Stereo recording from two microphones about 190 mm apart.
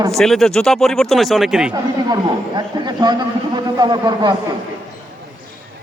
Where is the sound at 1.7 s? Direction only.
20° right (ahead or behind).